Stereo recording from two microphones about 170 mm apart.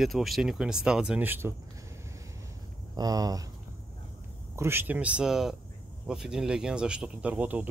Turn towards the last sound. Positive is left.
turn(degrees=-10)  # may be behind; listen again after turning